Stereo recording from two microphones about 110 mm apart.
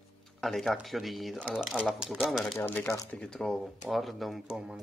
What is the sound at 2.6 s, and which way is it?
Speech, 15° left (ahead or behind).